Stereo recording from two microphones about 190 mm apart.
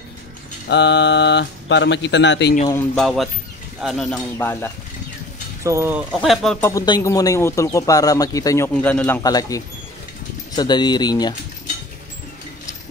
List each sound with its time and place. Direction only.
0.7 s speech: 65° left (ahead or behind)
3.0 s speech: centre (ahead or behind)
5.6 s speech: 15° right (ahead or behind)
6.2 s speech: centre (ahead or behind)
6.6 s speech: 15° left (ahead or behind)